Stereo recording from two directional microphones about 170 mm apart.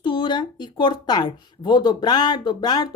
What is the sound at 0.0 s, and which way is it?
Speech, 30° left (ahead or behind).